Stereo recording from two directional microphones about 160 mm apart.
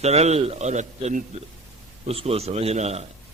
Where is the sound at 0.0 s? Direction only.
40° right (ahead or behind).